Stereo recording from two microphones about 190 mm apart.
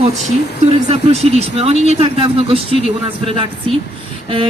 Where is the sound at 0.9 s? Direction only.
35° right (ahead or behind).